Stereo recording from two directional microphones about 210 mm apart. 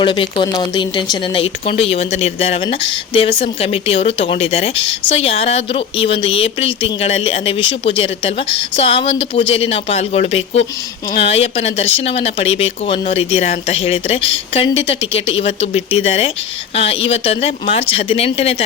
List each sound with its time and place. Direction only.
0.0 s speech: 25° left (ahead or behind)